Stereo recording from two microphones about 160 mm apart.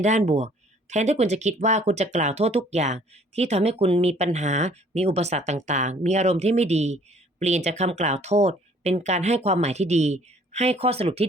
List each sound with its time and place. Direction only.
0.0 s speech: 45° right (ahead or behind)